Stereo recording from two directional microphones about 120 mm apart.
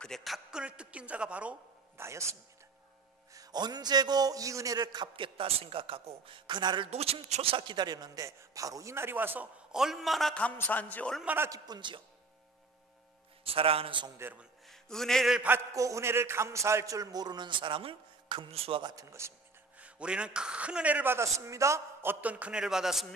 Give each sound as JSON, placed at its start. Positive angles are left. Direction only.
{"t": 0.0, "sound": "a man's voice", "side_deg": 0}
{"t": 2.0, "sound": "a man's voice", "side_deg": -25}
{"t": 3.3, "sound": "a man's voice", "side_deg": -35}
{"t": 6.9, "sound": "speech", "side_deg": -55}
{"t": 7.5, "sound": "a man's voice", "side_deg": -40}
{"t": 9.7, "sound": "a man's voice", "side_deg": -5}
{"t": 11.2, "sound": "a man's voice", "side_deg": -20}
{"t": 11.5, "sound": "a man's voice", "side_deg": -35}
{"t": 13.4, "sound": "a man's voice", "side_deg": -50}
{"t": 14.1, "sound": "a man's voice", "side_deg": -20}
{"t": 14.4, "sound": "music", "side_deg": 5}
{"t": 15.7, "sound": "a man's voice", "side_deg": -25}
{"t": 19.8, "sound": "a man's voice", "side_deg": -10}